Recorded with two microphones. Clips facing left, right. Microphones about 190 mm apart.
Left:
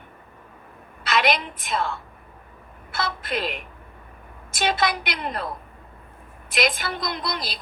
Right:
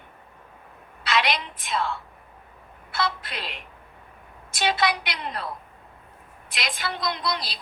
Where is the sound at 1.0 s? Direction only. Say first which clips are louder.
Left 3 dB; 50° left (ahead or behind).